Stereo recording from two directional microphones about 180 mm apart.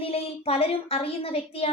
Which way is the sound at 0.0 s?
35° left (ahead or behind).